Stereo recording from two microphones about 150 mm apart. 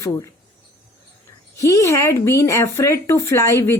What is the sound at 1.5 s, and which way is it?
Speech, 20° left (ahead or behind).